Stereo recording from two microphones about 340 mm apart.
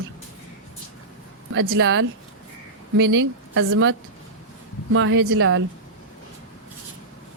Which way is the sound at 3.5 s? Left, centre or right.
Right.